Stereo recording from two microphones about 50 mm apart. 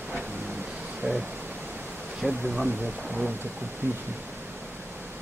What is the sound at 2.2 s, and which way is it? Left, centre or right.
Speech, centre.